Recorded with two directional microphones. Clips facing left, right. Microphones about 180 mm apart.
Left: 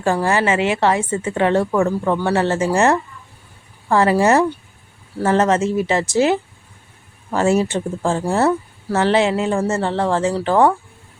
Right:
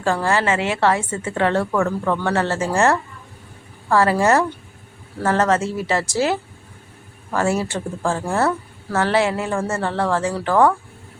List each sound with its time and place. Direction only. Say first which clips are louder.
0.0 s a woman's voice: left 2 dB; 15° left (ahead or behind)